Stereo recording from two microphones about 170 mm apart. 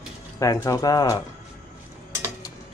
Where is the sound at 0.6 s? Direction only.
20° left (ahead or behind).